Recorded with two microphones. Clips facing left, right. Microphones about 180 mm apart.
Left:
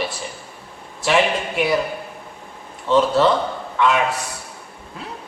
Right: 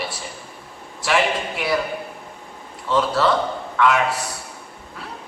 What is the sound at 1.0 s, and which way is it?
Speech, 20° left (ahead or behind).